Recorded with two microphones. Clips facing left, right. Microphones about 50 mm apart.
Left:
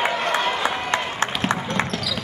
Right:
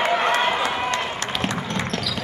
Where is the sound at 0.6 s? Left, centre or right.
Left.